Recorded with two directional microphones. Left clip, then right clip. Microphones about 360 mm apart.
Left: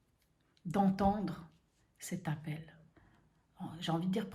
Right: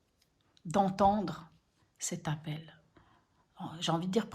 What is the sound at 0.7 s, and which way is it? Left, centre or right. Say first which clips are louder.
Speech: right 5 dB; centre.